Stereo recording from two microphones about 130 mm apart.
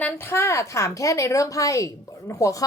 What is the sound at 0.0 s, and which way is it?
A woman's voice, 15° left (ahead or behind).